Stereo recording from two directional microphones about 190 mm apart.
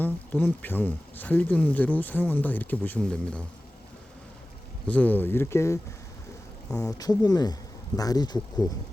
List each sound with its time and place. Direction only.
0.0 s speech: 10° left (ahead or behind)
4.9 s speech: 10° left (ahead or behind)